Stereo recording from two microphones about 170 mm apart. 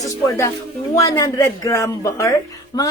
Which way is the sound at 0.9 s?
20° left (ahead or behind).